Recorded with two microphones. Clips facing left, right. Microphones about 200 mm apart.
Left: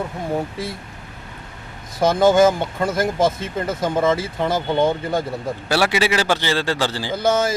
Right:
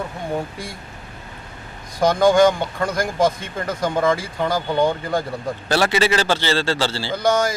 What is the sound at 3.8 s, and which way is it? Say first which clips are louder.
Speech: even; 5° left (ahead or behind).